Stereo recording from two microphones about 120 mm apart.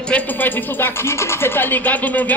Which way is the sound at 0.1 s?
15° left (ahead or behind).